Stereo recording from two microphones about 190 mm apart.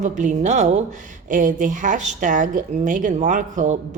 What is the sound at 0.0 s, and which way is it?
A woman's voice, 40° right (ahead or behind).